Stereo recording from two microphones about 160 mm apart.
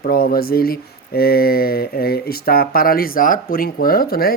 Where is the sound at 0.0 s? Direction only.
65° left (ahead or behind).